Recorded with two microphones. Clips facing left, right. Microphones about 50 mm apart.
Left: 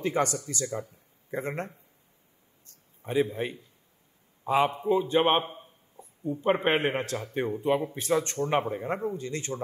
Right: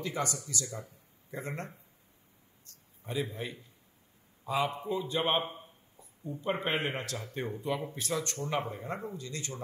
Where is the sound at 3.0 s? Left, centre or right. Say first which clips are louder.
Left 8 dB; left.